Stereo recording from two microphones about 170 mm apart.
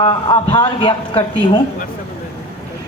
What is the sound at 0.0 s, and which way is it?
A man's voice, 25° left (ahead or behind).